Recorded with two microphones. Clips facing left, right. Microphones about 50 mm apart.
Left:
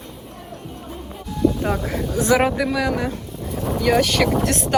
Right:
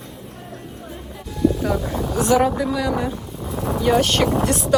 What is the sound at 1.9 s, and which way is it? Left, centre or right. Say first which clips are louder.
Speech: even; left.